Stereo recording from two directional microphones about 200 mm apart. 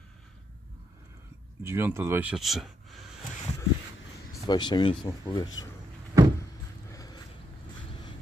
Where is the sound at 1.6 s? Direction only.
10° right (ahead or behind).